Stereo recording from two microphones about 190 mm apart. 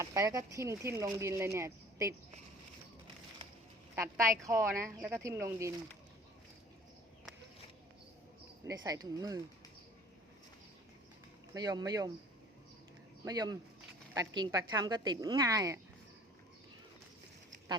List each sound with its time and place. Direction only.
0.0 s speech: 15° right (ahead or behind)
3.9 s speech: 15° right (ahead or behind)
8.6 s a woman's voice: 20° right (ahead or behind)
11.5 s a woman's voice: 20° right (ahead or behind)
13.2 s a woman's voice: 20° right (ahead or behind)